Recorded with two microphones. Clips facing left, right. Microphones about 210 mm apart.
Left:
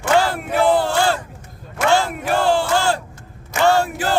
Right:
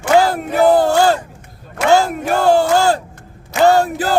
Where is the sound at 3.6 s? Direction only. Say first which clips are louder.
Right 4 dB; 40° right (ahead or behind).